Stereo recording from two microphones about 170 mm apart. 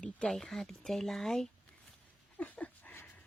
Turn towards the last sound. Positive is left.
turn(degrees=10)  # may be behind; listen again after turning